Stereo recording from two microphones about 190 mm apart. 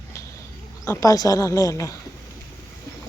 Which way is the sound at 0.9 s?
15° left (ahead or behind).